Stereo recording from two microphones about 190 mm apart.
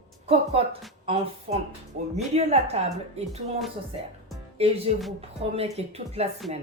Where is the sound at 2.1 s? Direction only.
35° right (ahead or behind).